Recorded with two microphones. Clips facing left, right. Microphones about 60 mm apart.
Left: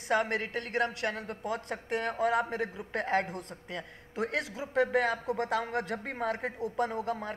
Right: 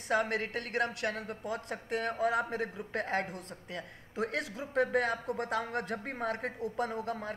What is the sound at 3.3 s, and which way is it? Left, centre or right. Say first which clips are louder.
Speech: left 2 dB; left.